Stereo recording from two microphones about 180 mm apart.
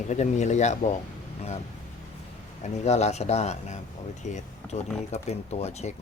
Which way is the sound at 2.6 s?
40° left (ahead or behind).